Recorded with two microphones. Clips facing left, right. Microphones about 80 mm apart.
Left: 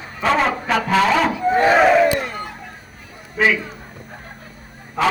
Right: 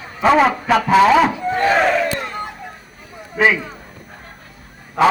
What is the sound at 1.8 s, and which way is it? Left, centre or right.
Battle cry, centre.